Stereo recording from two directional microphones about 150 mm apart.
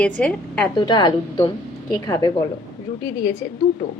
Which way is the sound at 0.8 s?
30° left (ahead or behind).